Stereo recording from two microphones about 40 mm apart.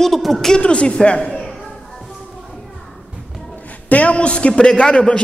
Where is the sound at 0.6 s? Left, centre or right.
Left.